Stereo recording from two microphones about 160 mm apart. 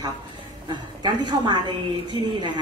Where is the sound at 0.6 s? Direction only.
30° right (ahead or behind).